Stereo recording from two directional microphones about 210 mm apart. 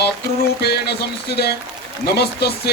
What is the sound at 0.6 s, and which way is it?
Speech, 50° left (ahead or behind).